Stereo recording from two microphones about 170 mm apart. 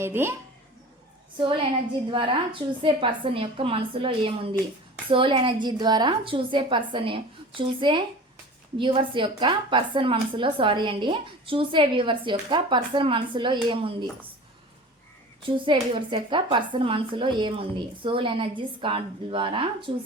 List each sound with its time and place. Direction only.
0.0 s speech: 15° right (ahead or behind)
2.0 s a woman's voice: 30° right (ahead or behind)
15.4 s speech: 30° right (ahead or behind)